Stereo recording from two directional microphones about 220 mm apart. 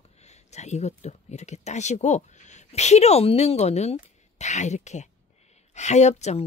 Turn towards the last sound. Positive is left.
turn(degrees=30)  # may be behind; listen again after turning